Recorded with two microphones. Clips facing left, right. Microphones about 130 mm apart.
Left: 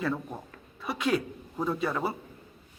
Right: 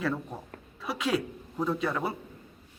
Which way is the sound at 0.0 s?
Centre (ahead or behind).